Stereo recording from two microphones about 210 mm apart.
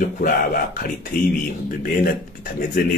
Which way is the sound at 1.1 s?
40° left (ahead or behind).